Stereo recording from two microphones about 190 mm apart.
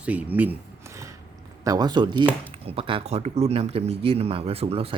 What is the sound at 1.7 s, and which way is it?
Speech, 20° right (ahead or behind).